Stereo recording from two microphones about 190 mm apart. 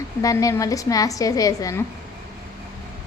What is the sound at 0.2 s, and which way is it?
A woman's voice, 15° left (ahead or behind).